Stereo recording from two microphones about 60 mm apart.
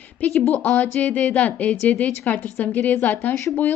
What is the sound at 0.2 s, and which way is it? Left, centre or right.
A woman's voice, left.